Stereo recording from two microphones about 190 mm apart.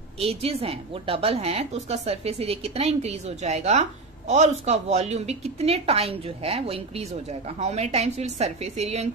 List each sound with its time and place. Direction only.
0.2 s a woman's voice: 30° right (ahead or behind)